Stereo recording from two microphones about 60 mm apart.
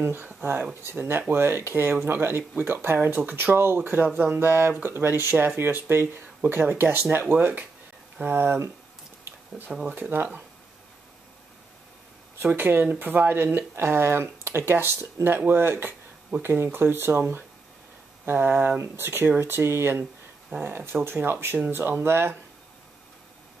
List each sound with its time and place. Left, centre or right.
0.0 s speech: right
9.8 s speech: right
12.4 s speech: right